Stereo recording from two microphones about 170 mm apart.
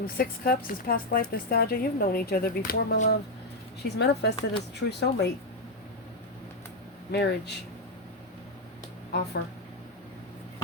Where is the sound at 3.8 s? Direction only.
80° left.